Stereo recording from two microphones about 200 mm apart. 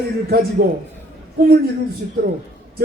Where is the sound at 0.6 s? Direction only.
45° right (ahead or behind).